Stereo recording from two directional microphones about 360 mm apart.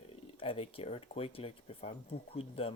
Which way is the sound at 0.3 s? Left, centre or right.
Centre.